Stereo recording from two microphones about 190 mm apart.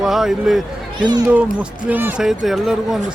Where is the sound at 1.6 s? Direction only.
10° right (ahead or behind).